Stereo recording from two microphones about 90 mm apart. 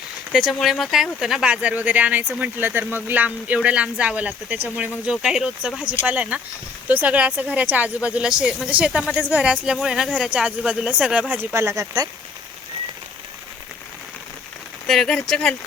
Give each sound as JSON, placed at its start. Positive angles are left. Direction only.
{"t": 0.3, "sound": "speech", "side_deg": 0}
{"t": 11.3, "sound": "speech", "side_deg": -25}
{"t": 14.8, "sound": "speech", "side_deg": 5}